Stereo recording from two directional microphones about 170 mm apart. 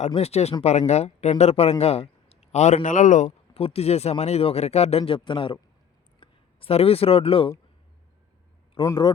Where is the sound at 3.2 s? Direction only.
35° left (ahead or behind).